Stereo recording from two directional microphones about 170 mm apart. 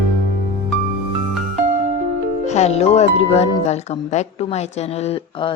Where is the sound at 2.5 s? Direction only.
40° left (ahead or behind).